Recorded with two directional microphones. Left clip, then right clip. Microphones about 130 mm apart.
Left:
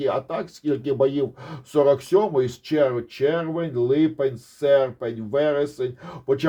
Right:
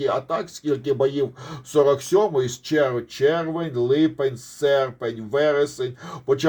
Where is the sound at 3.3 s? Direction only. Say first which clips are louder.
Even; 15° right (ahead or behind).